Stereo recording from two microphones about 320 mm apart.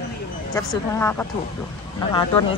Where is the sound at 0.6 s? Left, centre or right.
Centre.